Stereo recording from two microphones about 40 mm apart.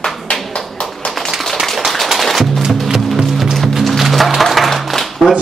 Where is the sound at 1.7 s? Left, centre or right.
Centre.